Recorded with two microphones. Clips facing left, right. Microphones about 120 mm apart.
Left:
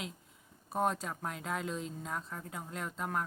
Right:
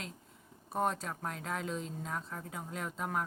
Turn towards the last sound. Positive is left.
turn(degrees=0)  # may be behind; listen again after turning